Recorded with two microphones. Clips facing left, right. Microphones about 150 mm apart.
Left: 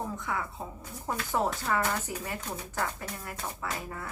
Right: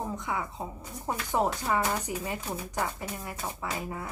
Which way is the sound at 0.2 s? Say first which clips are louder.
Right 1 dB; 20° right (ahead or behind).